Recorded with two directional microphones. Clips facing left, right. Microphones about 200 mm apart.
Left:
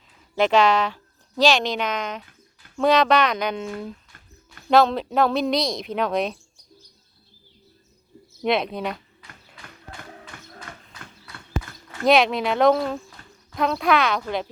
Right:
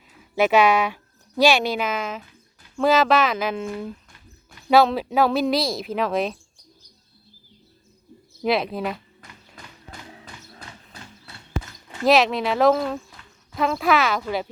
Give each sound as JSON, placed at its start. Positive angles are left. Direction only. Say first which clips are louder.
{"t": 0.3, "sound": "speech", "louder": "right 1 dB", "side_deg": -10}
{"t": 8.4, "sound": "speech", "louder": "even", "side_deg": 0}
{"t": 9.2, "sound": "tap", "louder": "right 1 dB", "side_deg": -45}
{"t": 10.3, "sound": "a sound", "louder": "left 1 dB", "side_deg": 60}
{"t": 10.7, "sound": "horse", "louder": "left 1 dB", "side_deg": 55}
{"t": 12.0, "sound": "speech", "louder": "even", "side_deg": 0}